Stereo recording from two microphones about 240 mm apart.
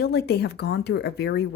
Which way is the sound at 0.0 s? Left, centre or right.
Left.